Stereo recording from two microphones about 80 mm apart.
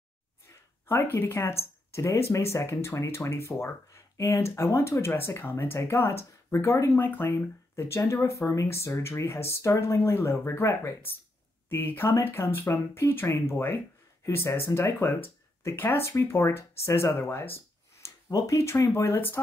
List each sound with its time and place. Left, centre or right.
0.5 s speech: left
7.0 s speech: left